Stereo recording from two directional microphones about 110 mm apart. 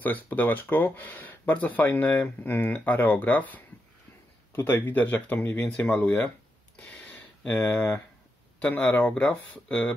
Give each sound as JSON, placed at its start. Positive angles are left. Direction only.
{"t": 0.0, "sound": "speech", "side_deg": 15}
{"t": 6.8, "sound": "a sound", "side_deg": 10}
{"t": 7.7, "sound": "speech", "side_deg": 10}